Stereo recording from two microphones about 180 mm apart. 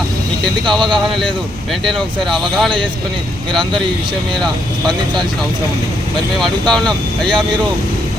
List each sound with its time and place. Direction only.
0.8 s speech: 25° right (ahead or behind)
1.8 s speech: centre (ahead or behind)
4.4 s speech: centre (ahead or behind)
6.4 s speech: centre (ahead or behind)